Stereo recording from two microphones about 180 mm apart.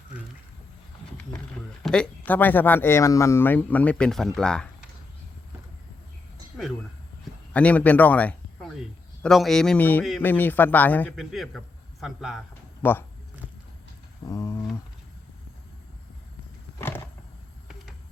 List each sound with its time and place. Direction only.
1.8 s speech: 5° left (ahead or behind)
7.5 s speech: 5° left (ahead or behind)
11.2 s a man's voice: centre (ahead or behind)
12.8 s speech: 10° left (ahead or behind)
14.3 s speech: 15° left (ahead or behind)